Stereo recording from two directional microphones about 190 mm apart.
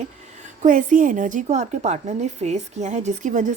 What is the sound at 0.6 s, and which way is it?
A woman's voice, 45° right (ahead or behind).